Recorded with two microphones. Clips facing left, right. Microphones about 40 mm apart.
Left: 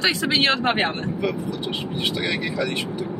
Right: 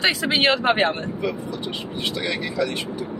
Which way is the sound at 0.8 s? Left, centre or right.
Centre.